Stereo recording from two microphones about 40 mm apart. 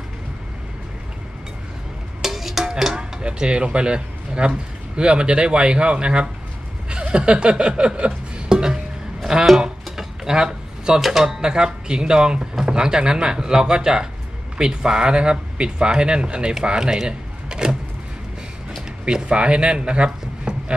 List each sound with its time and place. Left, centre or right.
2.2 s music: centre
3.0 s speech: right
6.9 s a sound: right
9.3 s speech: centre
10.2 s a sound: centre
11.0 s speech: centre
19.0 s speech: right